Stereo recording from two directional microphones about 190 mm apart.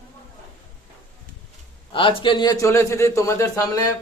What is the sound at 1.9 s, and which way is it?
A man's voice, 25° left (ahead or behind).